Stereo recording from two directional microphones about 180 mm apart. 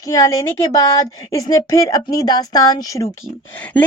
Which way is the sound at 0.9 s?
15° left (ahead or behind).